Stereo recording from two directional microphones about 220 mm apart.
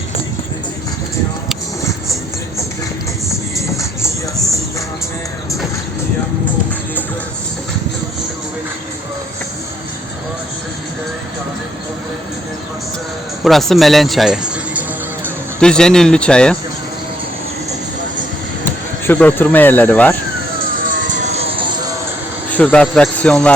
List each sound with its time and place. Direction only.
13.4 s music: centre (ahead or behind)
15.6 s speech: 5° left (ahead or behind)
18.6 s speech: 10° left (ahead or behind)
20.8 s vehicle: 35° right (ahead or behind)
22.4 s speech: 5° left (ahead or behind)